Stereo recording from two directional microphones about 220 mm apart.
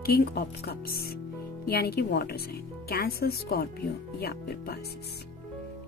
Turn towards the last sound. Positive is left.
turn(degrees=45)  # may be behind; listen again after turning